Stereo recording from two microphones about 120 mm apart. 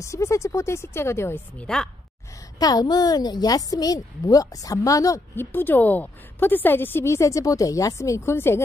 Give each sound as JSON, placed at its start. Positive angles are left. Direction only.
{"t": 0.0, "sound": "a woman's voice", "side_deg": 25}
{"t": 2.6, "sound": "a woman's voice", "side_deg": 35}